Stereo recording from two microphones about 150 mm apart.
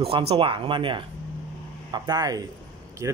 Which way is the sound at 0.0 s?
40° right (ahead or behind).